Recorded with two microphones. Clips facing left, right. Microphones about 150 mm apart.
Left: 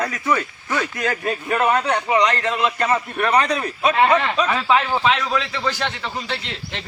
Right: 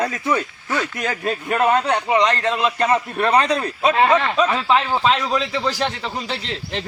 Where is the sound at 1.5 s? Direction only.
20° right (ahead or behind).